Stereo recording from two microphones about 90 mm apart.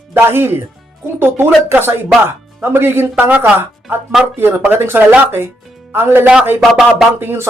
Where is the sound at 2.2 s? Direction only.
25° right (ahead or behind).